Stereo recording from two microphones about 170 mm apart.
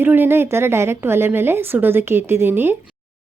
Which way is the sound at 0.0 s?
10° right (ahead or behind).